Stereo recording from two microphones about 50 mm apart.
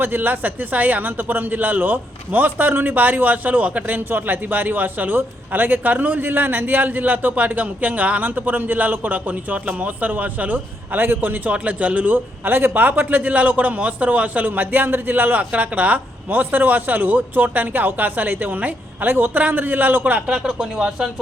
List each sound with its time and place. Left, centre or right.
0.0 s a man's voice: right
4.1 s a man's voice: right
20.2 s speech: centre